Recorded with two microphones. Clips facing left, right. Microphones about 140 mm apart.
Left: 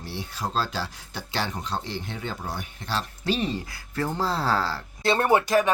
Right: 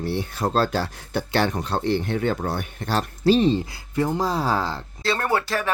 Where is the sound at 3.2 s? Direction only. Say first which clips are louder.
Right 11 dB; 35° right (ahead or behind); by 4.8 s 15° right (ahead or behind).